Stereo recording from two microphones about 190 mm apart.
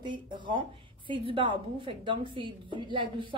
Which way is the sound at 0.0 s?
25° right (ahead or behind).